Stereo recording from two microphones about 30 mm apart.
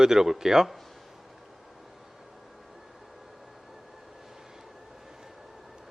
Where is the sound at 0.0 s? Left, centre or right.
Centre.